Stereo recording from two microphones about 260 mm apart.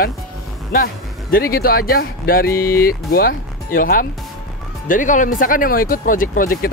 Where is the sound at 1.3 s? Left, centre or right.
Left.